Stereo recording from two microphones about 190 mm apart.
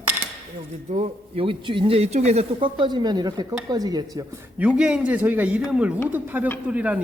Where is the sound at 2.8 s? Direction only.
25° right (ahead or behind).